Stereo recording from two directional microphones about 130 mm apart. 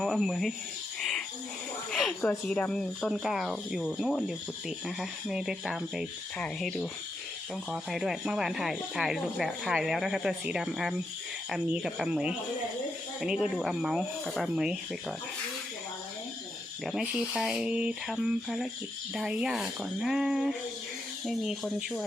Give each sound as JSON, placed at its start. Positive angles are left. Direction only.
{"t": 0.0, "sound": "speech", "side_deg": 0}
{"t": 1.9, "sound": "a sound", "side_deg": 5}
{"t": 2.5, "sound": "speech", "side_deg": 5}
{"t": 16.8, "sound": "speech", "side_deg": -5}